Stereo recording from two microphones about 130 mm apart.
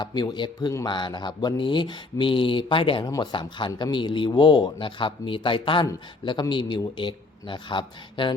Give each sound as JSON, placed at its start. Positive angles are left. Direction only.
{"t": 0.0, "sound": "a man's voice", "side_deg": 35}
{"t": 3.9, "sound": "a man's voice", "side_deg": 40}